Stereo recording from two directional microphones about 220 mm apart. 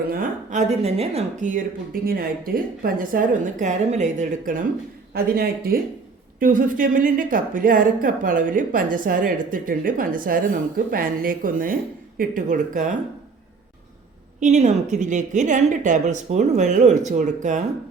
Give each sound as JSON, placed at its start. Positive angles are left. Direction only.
{"t": 0.1, "sound": "a woman's voice", "side_deg": -35}
{"t": 14.3, "sound": "a woman's voice", "side_deg": -35}